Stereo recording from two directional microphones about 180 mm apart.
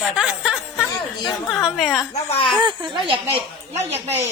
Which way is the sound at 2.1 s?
30° left (ahead or behind).